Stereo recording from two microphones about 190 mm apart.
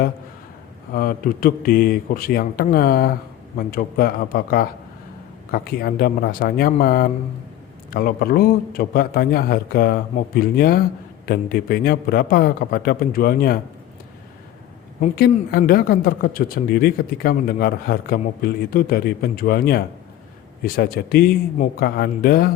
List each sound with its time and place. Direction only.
0.9 s speech: 50° left (ahead or behind)
15.0 s speech: 50° left (ahead or behind)